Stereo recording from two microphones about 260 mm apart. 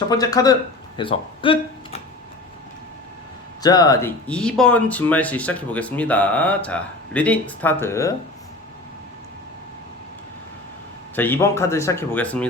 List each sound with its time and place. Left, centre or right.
0.1 s speech: centre
3.6 s speech: centre
11.1 s speech: centre